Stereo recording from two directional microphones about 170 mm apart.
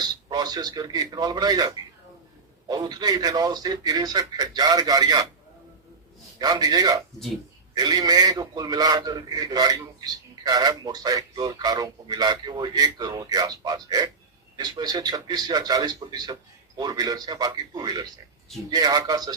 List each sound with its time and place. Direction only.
0.3 s a man's voice: 25° right (ahead or behind)
6.4 s a man's voice: 25° right (ahead or behind)